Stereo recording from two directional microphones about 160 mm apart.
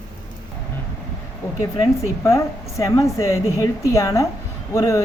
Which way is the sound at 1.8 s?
20° left (ahead or behind).